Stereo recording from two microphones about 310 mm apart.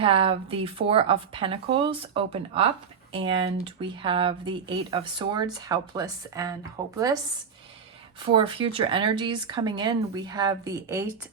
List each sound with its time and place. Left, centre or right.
0.0 s speech: centre
8.2 s speech: centre